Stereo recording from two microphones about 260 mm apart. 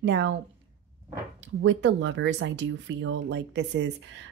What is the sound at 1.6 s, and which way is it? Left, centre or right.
Speech, right.